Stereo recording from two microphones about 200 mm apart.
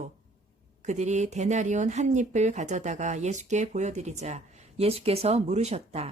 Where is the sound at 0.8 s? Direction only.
35° right (ahead or behind).